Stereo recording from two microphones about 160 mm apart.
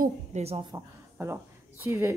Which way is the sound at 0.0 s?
45° right (ahead or behind).